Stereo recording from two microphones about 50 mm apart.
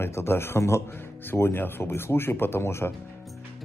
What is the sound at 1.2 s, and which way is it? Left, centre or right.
Speech, left.